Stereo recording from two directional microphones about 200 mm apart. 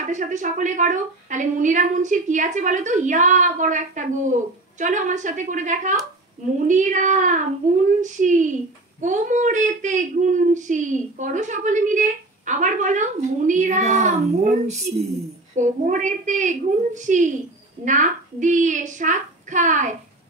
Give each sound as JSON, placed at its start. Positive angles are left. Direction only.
{"t": 0.0, "sound": "a child's voice", "side_deg": -35}